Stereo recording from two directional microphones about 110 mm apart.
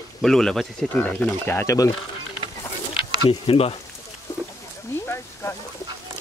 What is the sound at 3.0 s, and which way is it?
Speech, 55° left (ahead or behind).